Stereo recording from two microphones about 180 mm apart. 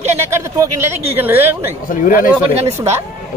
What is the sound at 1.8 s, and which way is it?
Speech, 50° left (ahead or behind).